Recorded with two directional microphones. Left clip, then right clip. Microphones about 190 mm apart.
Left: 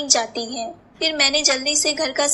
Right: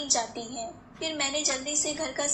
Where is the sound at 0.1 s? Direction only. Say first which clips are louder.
Left 10 dB; 35° left (ahead or behind).